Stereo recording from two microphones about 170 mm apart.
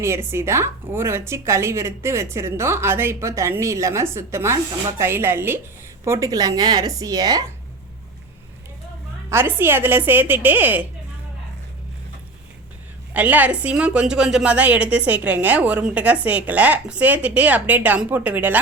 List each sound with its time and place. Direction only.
0.0 s a woman's voice: 15° right (ahead or behind)
9.3 s a woman's voice: 15° right (ahead or behind)
13.1 s a woman's voice: 10° right (ahead or behind)